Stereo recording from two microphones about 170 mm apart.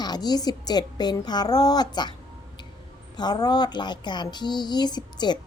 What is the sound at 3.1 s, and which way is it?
A woman's voice, 25° left (ahead or behind).